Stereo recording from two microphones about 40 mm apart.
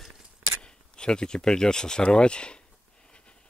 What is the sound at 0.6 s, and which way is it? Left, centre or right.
Speech, left.